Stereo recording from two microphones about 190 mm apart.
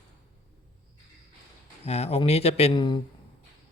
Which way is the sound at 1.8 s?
35° left (ahead or behind).